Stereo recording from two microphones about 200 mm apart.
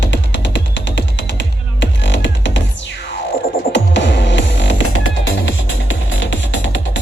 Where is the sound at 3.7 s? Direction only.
65° left (ahead or behind).